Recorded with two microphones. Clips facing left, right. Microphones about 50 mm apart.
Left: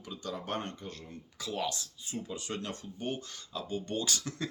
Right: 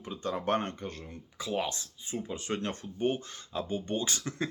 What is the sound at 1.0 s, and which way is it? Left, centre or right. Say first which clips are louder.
Speech: right 3 dB; right.